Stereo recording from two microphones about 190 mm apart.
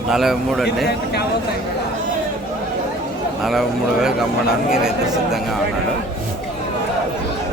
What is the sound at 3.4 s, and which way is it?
Speech, centre (ahead or behind).